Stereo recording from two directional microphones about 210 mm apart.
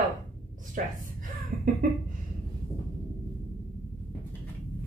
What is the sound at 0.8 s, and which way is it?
Speech, 40° right (ahead or behind).